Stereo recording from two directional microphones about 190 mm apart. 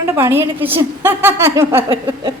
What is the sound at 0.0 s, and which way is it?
A woman's voice, 15° right (ahead or behind).